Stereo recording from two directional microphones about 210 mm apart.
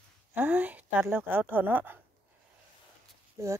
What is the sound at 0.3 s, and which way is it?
Speech, 10° right (ahead or behind).